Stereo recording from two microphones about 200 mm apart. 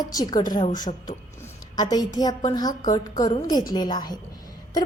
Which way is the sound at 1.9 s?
20° left (ahead or behind).